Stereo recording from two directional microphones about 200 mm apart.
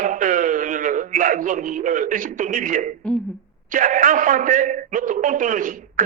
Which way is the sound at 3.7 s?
40° right (ahead or behind).